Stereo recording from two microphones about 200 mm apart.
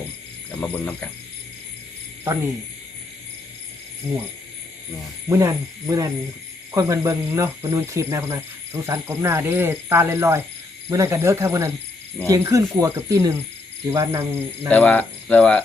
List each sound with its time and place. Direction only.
0.6 s speech: 10° left (ahead or behind)
5.3 s speech: 15° right (ahead or behind)
14.7 s speech: 5° left (ahead or behind)